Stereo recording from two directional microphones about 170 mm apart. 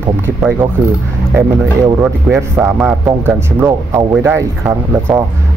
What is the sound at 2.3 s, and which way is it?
A man's voice, 15° right (ahead or behind).